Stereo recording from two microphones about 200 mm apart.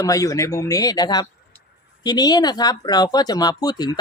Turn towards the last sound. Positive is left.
turn(degrees=20)  # may be behind; listen again after turning